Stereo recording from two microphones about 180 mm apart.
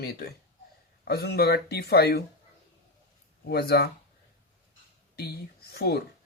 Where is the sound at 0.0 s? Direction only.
60° left (ahead or behind).